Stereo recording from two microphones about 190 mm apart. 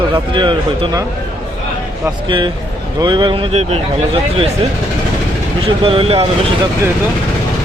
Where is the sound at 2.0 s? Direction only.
25° right (ahead or behind).